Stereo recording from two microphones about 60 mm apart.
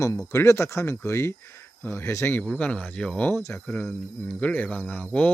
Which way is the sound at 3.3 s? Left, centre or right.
Left.